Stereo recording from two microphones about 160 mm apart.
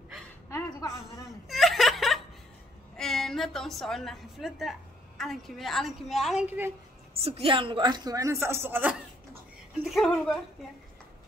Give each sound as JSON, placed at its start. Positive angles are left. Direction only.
{"t": 0.5, "sound": "a sound", "side_deg": 15}
{"t": 1.5, "sound": "snicker", "side_deg": 0}
{"t": 3.0, "sound": "a woman's voice", "side_deg": 0}
{"t": 6.4, "sound": "a woman's voice", "side_deg": -10}
{"t": 7.2, "sound": "a woman's voice", "side_deg": -35}
{"t": 9.8, "sound": "speech", "side_deg": 0}